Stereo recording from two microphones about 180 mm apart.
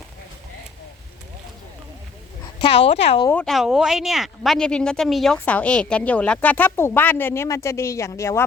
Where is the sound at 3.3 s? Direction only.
5° left (ahead or behind).